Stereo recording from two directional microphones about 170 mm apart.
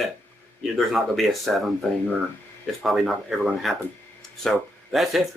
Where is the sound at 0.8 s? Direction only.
Centre (ahead or behind).